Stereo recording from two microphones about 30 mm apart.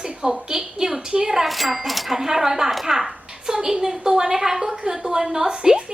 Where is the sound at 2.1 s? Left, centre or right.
Centre.